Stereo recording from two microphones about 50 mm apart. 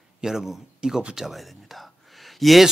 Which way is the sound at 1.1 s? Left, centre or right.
Centre.